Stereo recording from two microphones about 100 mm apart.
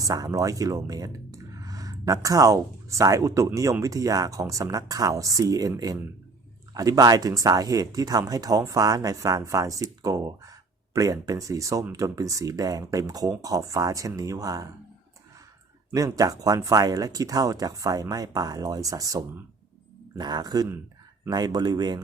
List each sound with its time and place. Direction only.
0.0 s speech: 35° right (ahead or behind)
15.9 s speech: 35° right (ahead or behind)
20.1 s speech: 45° right (ahead or behind)